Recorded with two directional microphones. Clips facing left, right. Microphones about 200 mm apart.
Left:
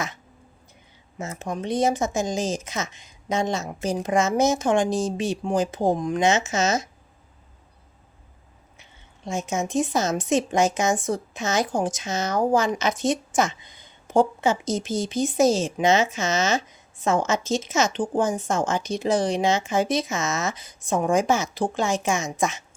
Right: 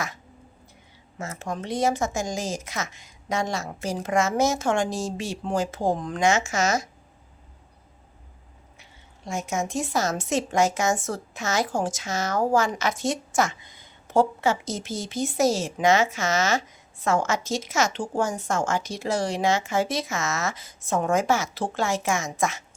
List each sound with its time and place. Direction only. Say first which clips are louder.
1.2 s a woman's voice: left 2 dB; 20° left (ahead or behind)
8.8 s a sound: left 4 dB; 20° left (ahead or behind)
9.5 s a woman's voice: left 4 dB; 20° left (ahead or behind)